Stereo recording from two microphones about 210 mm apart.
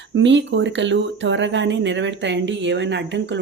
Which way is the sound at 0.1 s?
60° right (ahead or behind).